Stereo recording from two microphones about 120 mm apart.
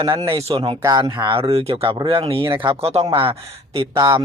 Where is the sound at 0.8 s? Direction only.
35° right (ahead or behind).